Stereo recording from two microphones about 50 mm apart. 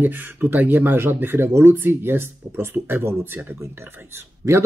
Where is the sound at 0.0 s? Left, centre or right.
Right.